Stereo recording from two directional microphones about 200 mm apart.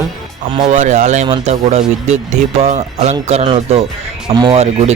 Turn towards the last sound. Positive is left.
turn(degrees=-35)  # may be behind; listen again after turning